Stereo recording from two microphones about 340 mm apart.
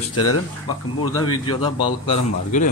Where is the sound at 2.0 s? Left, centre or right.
Left.